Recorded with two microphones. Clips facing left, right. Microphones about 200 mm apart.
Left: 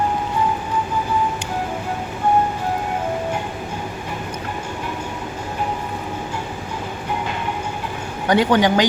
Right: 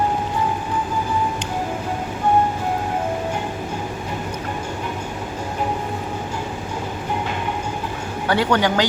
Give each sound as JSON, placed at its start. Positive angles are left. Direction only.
{"t": 8.3, "sound": "speech", "side_deg": 15}